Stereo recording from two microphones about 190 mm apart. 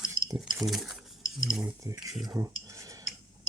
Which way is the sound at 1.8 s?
20° right (ahead or behind).